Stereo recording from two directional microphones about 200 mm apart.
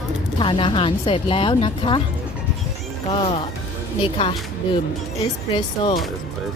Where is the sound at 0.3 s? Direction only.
25° left (ahead or behind).